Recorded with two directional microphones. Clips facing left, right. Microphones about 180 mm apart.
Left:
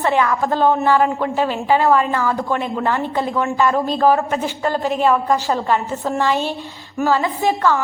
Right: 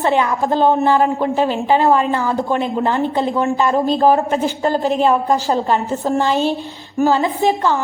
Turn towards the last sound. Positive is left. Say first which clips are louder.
# right 1 dB
turn(degrees=-25)  # may be behind; listen again after turning